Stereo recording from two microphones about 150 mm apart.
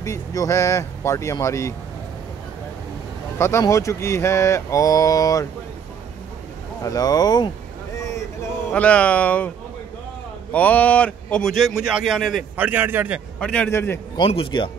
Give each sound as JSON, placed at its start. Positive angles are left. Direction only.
{"t": 0.0, "sound": "speech", "side_deg": 20}
{"t": 3.3, "sound": "speech", "side_deg": 20}
{"t": 6.8, "sound": "speech", "side_deg": 25}
{"t": 8.0, "sound": "boat", "side_deg": 20}
{"t": 8.7, "sound": "speech", "side_deg": 10}
{"t": 10.5, "sound": "a man's voice", "side_deg": 10}
{"t": 12.5, "sound": "a man's voice", "side_deg": -10}
{"t": 13.4, "sound": "speech", "side_deg": 10}
{"t": 14.1, "sound": "speech", "side_deg": 35}